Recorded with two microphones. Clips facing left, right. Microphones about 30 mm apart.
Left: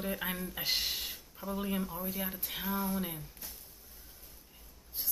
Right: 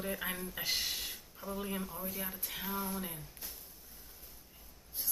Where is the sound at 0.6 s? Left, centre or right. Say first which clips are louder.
Left 3 dB; centre.